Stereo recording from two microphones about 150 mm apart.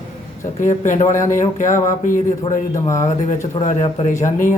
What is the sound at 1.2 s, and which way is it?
Speech, 20° left (ahead or behind).